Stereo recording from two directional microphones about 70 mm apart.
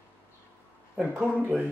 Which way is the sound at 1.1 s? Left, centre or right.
Right.